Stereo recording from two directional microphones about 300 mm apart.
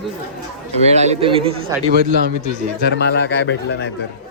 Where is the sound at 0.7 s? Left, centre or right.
Right.